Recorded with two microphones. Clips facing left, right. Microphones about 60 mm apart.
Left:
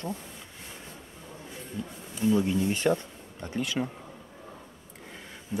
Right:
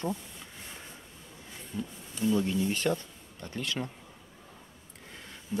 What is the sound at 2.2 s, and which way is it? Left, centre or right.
Speech, centre.